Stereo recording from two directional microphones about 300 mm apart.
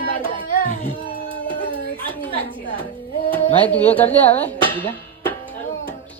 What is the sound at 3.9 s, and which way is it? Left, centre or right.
Speech, centre.